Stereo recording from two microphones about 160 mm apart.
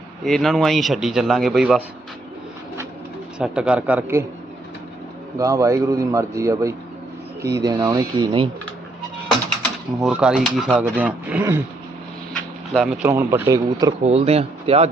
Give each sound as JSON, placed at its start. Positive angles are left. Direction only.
{"t": 0.3, "sound": "a man's voice", "side_deg": 0}
{"t": 3.3, "sound": "speech", "side_deg": -5}
{"t": 5.4, "sound": "a man's voice", "side_deg": -20}
{"t": 10.0, "sound": "a man's voice", "side_deg": -5}
{"t": 12.3, "sound": "a sound", "side_deg": 0}
{"t": 13.0, "sound": "speech", "side_deg": -15}
{"t": 14.0, "sound": "speech", "side_deg": -40}